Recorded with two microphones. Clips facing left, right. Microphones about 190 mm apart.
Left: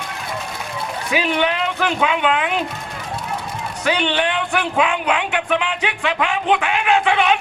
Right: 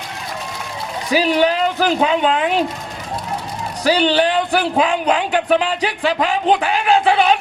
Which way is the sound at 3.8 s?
35° right (ahead or behind).